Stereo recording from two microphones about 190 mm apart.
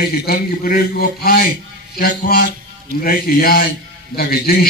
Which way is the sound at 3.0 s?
50° left (ahead or behind).